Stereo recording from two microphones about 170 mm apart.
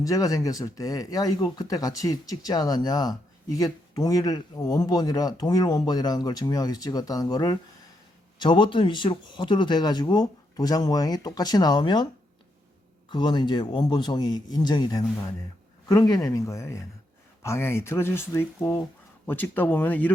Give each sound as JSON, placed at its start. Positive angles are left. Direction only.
{"t": 0.0, "sound": "speech", "side_deg": 20}
{"t": 13.1, "sound": "speech", "side_deg": 25}